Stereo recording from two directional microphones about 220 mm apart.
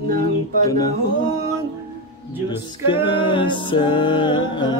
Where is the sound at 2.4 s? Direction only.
20° left (ahead or behind).